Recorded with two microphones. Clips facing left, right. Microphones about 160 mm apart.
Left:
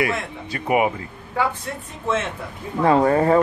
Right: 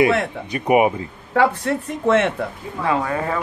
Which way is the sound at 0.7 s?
20° right (ahead or behind).